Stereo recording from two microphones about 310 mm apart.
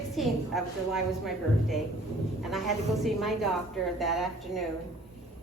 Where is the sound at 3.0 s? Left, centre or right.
Centre.